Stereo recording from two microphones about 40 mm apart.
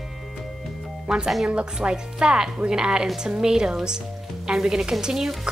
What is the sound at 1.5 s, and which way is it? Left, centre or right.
Speech, right.